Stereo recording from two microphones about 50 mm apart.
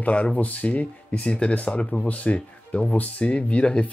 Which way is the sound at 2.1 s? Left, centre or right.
Left.